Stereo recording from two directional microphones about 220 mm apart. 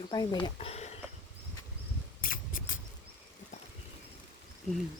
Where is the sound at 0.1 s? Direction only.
20° left (ahead or behind).